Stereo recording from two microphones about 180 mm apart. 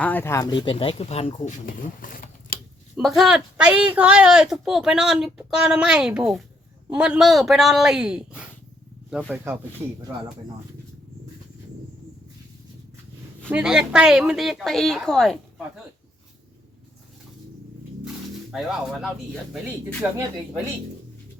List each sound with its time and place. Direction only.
0.0 s speech: 10° left (ahead or behind); by 2.6 s 50° left (ahead or behind)
2.9 s speech: centre (ahead or behind)
9.3 s speech: 15° right (ahead or behind)
13.5 s speech: 5° right (ahead or behind)
18.5 s speech: centre (ahead or behind)